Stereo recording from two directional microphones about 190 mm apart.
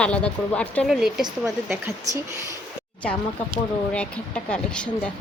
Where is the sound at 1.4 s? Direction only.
15° right (ahead or behind).